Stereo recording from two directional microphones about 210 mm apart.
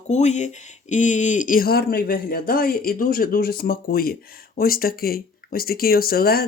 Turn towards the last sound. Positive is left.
turn(degrees=45)  # may be behind; listen again after turning